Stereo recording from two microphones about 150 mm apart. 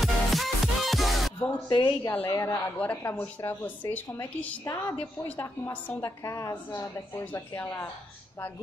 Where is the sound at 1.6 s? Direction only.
30° left (ahead or behind).